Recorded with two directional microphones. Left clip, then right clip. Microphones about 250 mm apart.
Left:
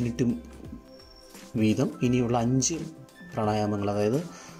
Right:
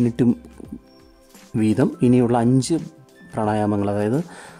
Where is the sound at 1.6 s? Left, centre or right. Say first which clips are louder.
Right 7 dB; centre.